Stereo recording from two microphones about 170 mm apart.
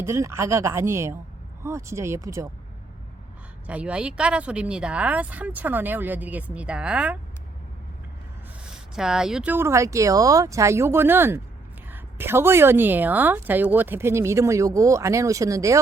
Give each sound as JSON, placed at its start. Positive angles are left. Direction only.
{"t": 0.0, "sound": "a woman's voice", "side_deg": -15}
{"t": 3.7, "sound": "a woman's voice", "side_deg": -5}
{"t": 9.0, "sound": "a woman's voice", "side_deg": -5}